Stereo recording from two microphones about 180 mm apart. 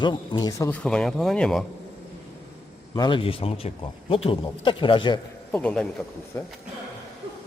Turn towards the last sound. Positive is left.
turn(degrees=15)  # may be behind; listen again after turning